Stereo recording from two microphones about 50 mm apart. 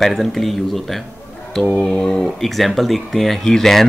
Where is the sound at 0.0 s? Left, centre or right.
Centre.